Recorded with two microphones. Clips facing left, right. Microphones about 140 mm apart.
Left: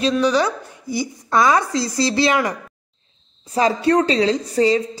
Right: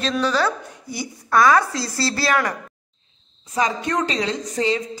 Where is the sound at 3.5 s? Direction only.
35° left (ahead or behind).